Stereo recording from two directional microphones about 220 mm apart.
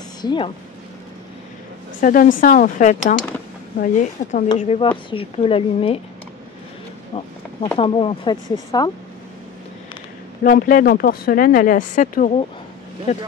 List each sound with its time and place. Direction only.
0.2 s speech: 20° left (ahead or behind)
2.0 s speech: 40° left (ahead or behind)
7.7 s speech: 25° left (ahead or behind)
10.4 s speech: 40° left (ahead or behind)